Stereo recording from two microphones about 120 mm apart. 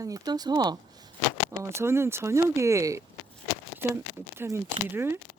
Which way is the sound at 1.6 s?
20° right (ahead or behind).